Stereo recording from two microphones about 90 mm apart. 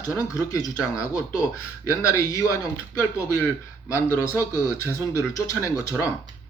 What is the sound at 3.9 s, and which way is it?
A man's voice, 30° left (ahead or behind).